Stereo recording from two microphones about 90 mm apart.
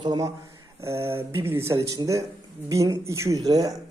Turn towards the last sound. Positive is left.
turn(degrees=-45)  # may be behind; listen again after turning